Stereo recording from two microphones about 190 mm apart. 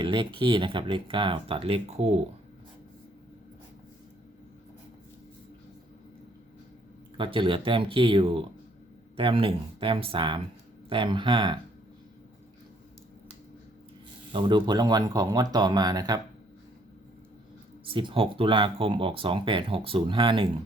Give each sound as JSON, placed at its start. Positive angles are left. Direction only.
{"t": 0.0, "sound": "speech", "side_deg": -25}
{"t": 7.2, "sound": "speech", "side_deg": -25}
{"t": 14.3, "sound": "speech", "side_deg": -25}
{"t": 17.8, "sound": "speech", "side_deg": -25}